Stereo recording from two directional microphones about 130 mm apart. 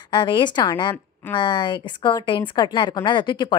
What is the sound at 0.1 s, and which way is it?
A woman's voice, 35° left (ahead or behind).